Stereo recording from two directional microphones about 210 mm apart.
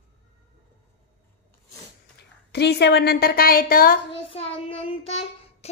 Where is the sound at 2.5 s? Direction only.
50° left (ahead or behind).